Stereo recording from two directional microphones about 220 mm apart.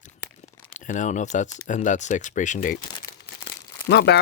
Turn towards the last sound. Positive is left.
turn(degrees=50)  # may be behind; listen again after turning